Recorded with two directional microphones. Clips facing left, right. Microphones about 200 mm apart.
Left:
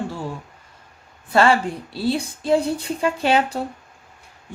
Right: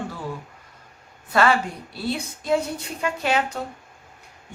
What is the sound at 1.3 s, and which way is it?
Speech, 30° left (ahead or behind).